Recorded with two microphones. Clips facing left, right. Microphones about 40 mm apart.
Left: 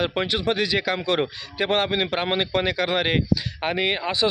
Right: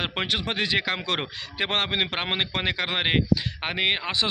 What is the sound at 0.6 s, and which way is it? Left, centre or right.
A man's voice, right.